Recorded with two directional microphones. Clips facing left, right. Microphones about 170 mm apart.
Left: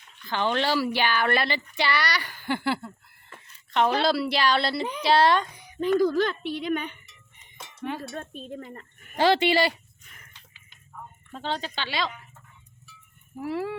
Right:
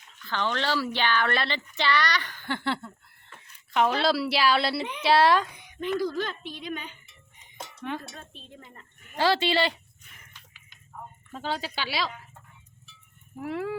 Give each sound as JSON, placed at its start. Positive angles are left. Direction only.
{"t": 0.3, "sound": "a woman's voice", "side_deg": 15}
{"t": 5.8, "sound": "speech", "side_deg": 40}
{"t": 6.1, "sound": "speech", "side_deg": 60}
{"t": 7.8, "sound": "cowbell", "side_deg": 5}
{"t": 8.0, "sound": "speech", "side_deg": 55}
{"t": 9.1, "sound": "speech", "side_deg": 20}
{"t": 11.3, "sound": "speech", "side_deg": -5}
{"t": 13.4, "sound": "a woman's voice", "side_deg": 0}